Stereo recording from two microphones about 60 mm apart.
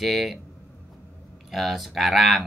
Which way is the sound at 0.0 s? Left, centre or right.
Centre.